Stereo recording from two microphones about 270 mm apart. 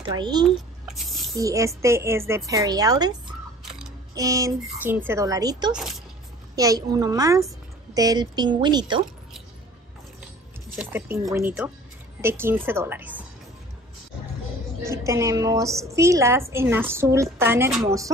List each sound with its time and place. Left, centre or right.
0.0 s a woman's voice: centre
0.9 s squish: centre
1.3 s a woman's voice: centre
5.8 s speech: centre
6.5 s a woman's voice: centre
10.8 s a woman's voice: centre
14.8 s a woman's voice: centre